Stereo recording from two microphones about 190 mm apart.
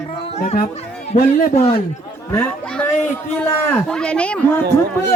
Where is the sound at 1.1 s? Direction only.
45° left (ahead or behind).